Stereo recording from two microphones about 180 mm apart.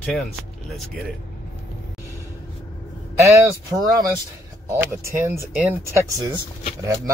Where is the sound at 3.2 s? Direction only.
15° right (ahead or behind).